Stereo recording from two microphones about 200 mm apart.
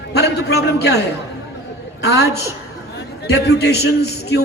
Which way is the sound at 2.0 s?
55° left (ahead or behind).